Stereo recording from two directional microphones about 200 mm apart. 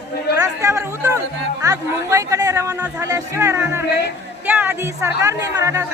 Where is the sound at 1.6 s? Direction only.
15° right (ahead or behind).